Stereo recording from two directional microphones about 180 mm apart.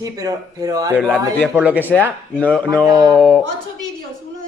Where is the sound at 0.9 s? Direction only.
5° left (ahead or behind).